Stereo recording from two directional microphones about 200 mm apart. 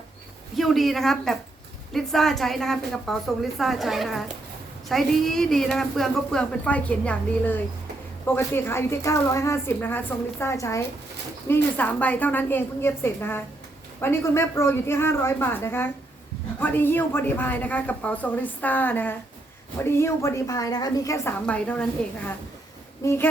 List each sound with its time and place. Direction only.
0.5 s a woman's voice: centre (ahead or behind); by 21.3 s 15° left (ahead or behind)
21.4 s a woman's voice: 5° left (ahead or behind)
23.0 s speech: 10° left (ahead or behind)